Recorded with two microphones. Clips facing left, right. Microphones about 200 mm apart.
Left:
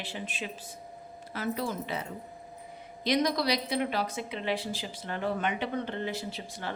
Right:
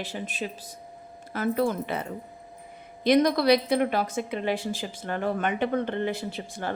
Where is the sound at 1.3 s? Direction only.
55° right (ahead or behind).